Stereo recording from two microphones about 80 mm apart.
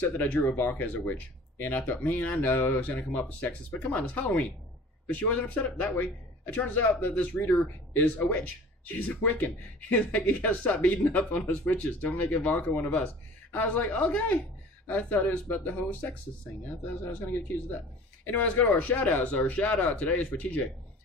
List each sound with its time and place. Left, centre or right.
0.2 s speech: centre